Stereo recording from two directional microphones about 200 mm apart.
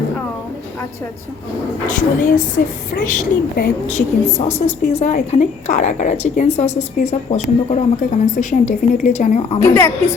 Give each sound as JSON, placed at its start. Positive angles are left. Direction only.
{"t": 2.0, "sound": "a woman's voice", "side_deg": 40}
{"t": 9.6, "sound": "a woman's voice", "side_deg": 15}